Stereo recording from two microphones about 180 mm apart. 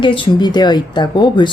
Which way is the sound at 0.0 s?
25° left (ahead or behind).